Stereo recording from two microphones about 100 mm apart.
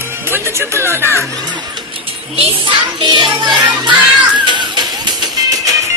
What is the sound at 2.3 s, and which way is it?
Music, 55° right (ahead or behind).